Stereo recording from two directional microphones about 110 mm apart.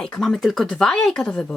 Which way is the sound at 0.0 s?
5° left (ahead or behind).